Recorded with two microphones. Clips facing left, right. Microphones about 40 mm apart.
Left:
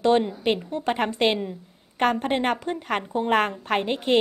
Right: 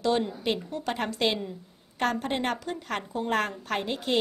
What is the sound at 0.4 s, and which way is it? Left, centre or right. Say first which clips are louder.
A woman's voice: left 5 dB; left.